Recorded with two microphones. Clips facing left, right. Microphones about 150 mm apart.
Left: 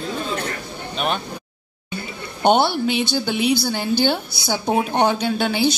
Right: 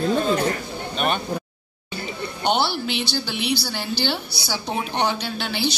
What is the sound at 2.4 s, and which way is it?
A woman's voice, 50° left (ahead or behind).